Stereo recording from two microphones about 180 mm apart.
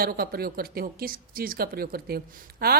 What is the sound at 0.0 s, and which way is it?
Speech, 55° right (ahead or behind).